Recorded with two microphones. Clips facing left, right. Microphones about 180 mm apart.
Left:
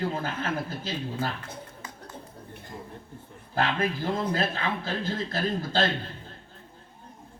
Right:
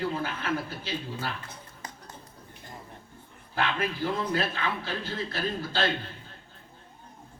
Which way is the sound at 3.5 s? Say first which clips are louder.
Left 3 dB; 40° left (ahead or behind).